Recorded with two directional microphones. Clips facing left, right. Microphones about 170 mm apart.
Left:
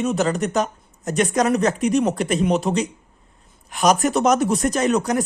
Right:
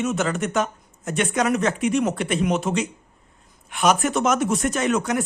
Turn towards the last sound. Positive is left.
turn(degrees=35)  # may be behind; listen again after turning